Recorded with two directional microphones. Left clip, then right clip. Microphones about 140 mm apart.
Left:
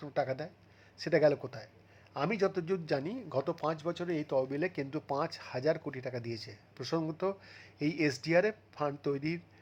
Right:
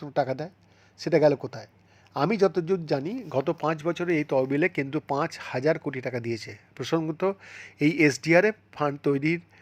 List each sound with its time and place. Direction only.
0.0 s speech: 30° right (ahead or behind)